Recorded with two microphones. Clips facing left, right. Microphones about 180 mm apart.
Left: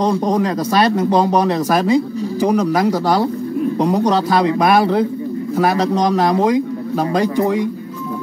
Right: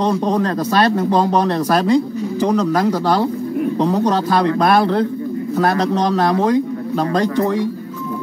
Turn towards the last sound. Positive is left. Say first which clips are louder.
# left 1 dB
turn(degrees=10)  # may be behind; listen again after turning